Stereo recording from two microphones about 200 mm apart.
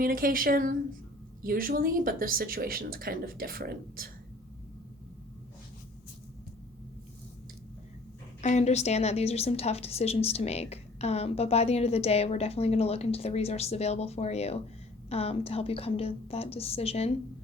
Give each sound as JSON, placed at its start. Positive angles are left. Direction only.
{"t": 0.0, "sound": "speech", "side_deg": -45}
{"t": 8.4, "sound": "a woman's voice", "side_deg": 35}